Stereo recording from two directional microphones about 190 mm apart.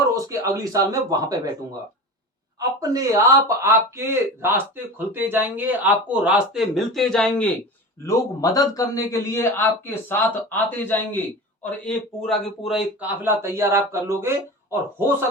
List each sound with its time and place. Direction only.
0.1 s speech: 15° right (ahead or behind)
2.6 s speech: 15° right (ahead or behind); by 7.5 s 5° left (ahead or behind)
8.0 s a man's voice: 20° left (ahead or behind); by 15.1 s 10° right (ahead or behind)